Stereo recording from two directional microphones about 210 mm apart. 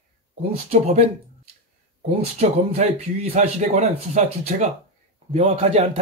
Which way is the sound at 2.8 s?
35° right (ahead or behind).